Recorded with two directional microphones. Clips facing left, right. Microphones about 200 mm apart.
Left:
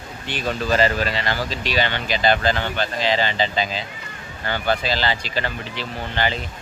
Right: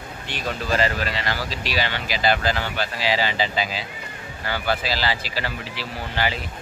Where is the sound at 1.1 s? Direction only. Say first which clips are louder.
Left 3 dB; centre (ahead or behind).